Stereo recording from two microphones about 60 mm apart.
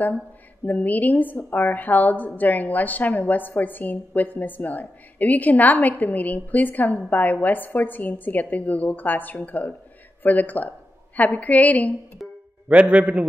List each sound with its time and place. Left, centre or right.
0.7 s a woman's voice: left
12.2 s music: centre
12.6 s a man's voice: right